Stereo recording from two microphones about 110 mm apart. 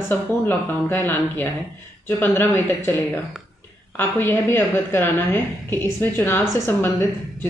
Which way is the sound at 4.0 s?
20° left (ahead or behind).